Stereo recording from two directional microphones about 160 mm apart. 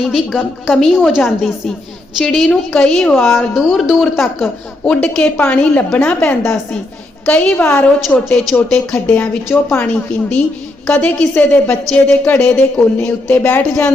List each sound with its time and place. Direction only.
0.1 s a woman's voice: centre (ahead or behind)
3.5 s a woman's voice: centre (ahead or behind)
8.2 s a woman's voice: centre (ahead or behind)